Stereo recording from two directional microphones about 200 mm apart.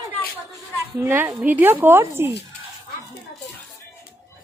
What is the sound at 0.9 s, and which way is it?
Speech, 10° right (ahead or behind).